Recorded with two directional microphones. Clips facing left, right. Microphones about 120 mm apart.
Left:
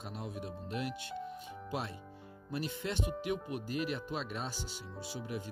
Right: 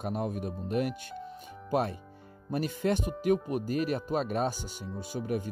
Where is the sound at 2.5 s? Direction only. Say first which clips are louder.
Right 9 dB; 50° right (ahead or behind).